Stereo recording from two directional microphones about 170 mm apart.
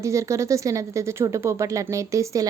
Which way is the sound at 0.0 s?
15° right (ahead or behind).